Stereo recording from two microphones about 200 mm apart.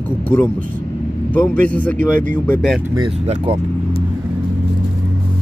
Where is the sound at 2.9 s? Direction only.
25° right (ahead or behind).